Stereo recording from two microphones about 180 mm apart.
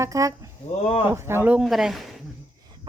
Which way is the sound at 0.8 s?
35° left (ahead or behind).